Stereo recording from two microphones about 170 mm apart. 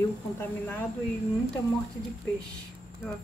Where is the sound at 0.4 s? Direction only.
15° left (ahead or behind).